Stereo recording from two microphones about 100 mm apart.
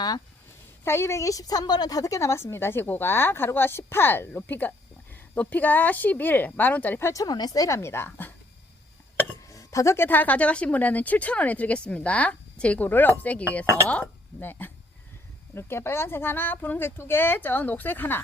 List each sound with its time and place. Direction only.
0.9 s a woman's voice: 25° left (ahead or behind)
7.1 s a woman's voice: 40° left (ahead or behind); by 8.3 s 25° left (ahead or behind)
9.5 s a woman's voice: 35° left (ahead or behind)